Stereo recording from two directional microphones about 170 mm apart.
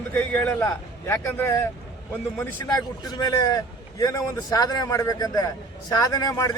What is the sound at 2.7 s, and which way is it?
A man's voice, 20° left (ahead or behind).